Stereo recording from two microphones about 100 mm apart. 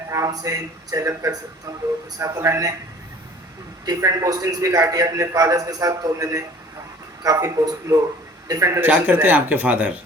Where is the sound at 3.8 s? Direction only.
40° right (ahead or behind).